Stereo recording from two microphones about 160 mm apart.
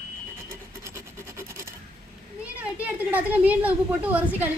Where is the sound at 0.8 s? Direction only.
15° right (ahead or behind).